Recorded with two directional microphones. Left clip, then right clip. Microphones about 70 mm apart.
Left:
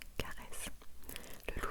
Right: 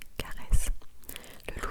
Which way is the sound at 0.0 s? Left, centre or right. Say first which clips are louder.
Right 4 dB; centre.